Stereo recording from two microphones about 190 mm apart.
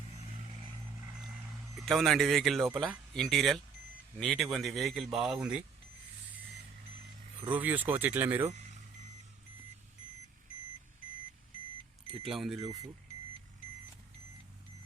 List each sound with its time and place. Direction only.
1.7 s speech: centre (ahead or behind)
7.5 s speech: 10° right (ahead or behind)
12.2 s speech: centre (ahead or behind)
12.5 s speech: 20° right (ahead or behind)